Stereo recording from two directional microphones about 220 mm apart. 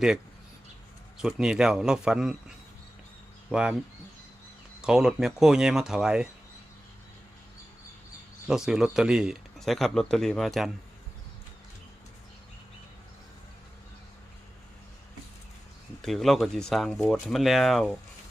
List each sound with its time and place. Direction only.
1.2 s speech: 5° right (ahead or behind)
3.5 s speech: 5° right (ahead or behind)
4.8 s speech: 5° right (ahead or behind)
8.4 s speech: centre (ahead or behind)
16.0 s speech: centre (ahead or behind)